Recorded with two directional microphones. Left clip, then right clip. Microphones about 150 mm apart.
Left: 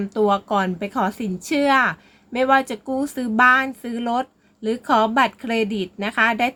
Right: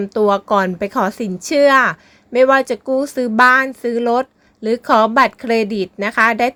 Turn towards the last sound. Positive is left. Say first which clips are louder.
# right 5 dB
turn(degrees=-35)  # may be behind; listen again after turning